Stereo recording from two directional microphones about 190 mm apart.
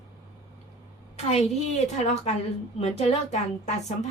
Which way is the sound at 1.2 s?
35° left (ahead or behind).